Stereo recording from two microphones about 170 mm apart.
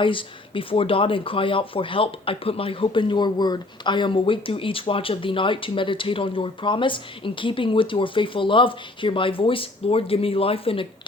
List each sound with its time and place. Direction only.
0.0 s speech: 30° left (ahead or behind)